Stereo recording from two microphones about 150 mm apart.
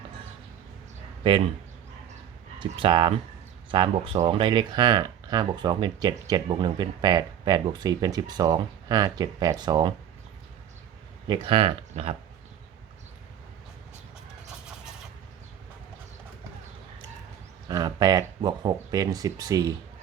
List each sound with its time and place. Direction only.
1.2 s speech: 35° right (ahead or behind)
2.6 s speech: 35° right (ahead or behind)
11.3 s speech: 35° right (ahead or behind)
17.7 s speech: 25° right (ahead or behind)